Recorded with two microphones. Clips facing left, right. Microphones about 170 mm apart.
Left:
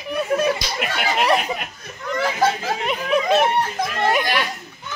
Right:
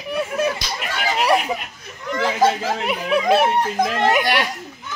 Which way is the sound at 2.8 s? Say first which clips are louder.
Right 1 dB; 10° right (ahead or behind).